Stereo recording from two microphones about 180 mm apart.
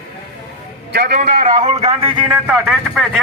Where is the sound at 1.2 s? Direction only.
45° right (ahead or behind).